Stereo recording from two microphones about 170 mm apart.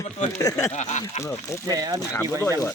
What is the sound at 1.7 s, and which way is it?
Speech, 25° right (ahead or behind).